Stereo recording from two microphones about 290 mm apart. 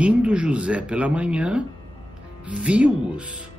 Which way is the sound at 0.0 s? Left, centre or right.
Centre.